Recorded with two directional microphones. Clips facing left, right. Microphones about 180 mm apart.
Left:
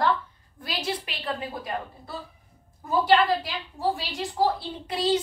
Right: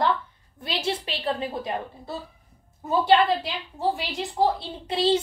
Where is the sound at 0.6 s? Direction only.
25° right (ahead or behind).